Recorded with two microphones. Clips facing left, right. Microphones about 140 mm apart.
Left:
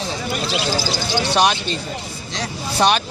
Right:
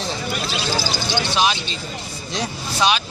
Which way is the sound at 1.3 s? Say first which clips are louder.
Left 4 dB; 55° left (ahead or behind).